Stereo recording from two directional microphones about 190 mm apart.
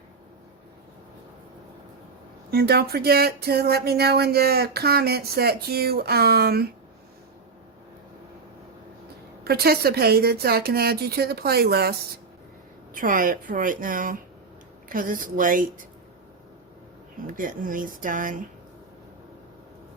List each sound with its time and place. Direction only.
2.5 s speech: 55° right (ahead or behind)
9.4 s a woman's voice: 55° right (ahead or behind)
17.3 s a woman's voice: 45° right (ahead or behind)